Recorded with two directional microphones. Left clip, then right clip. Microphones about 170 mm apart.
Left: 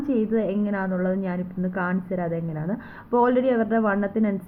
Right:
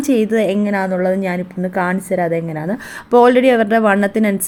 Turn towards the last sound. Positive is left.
turn(degrees=-30)  # may be behind; listen again after turning